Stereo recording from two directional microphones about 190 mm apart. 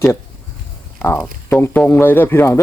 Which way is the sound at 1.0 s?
10° left (ahead or behind).